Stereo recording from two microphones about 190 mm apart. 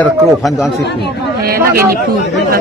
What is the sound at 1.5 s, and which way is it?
Speech, 15° right (ahead or behind).